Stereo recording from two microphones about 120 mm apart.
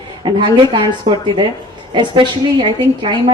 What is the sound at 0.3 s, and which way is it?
A woman's voice, 45° right (ahead or behind).